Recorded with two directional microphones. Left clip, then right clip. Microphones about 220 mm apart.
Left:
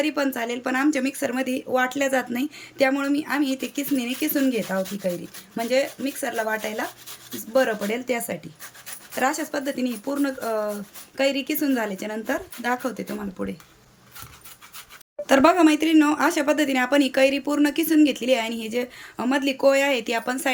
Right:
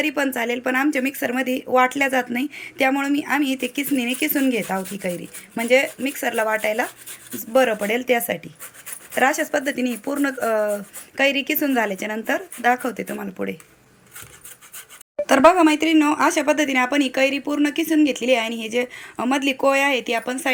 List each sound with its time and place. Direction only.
0.0 s a woman's voice: centre (ahead or behind)
15.3 s a woman's voice: centre (ahead or behind)